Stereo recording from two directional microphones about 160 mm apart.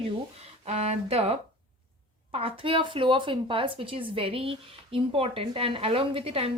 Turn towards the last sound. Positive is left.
turn(degrees=-35)  # may be behind; listen again after turning